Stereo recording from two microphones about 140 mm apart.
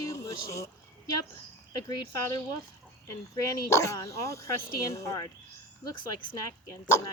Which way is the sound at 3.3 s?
25° left (ahead or behind).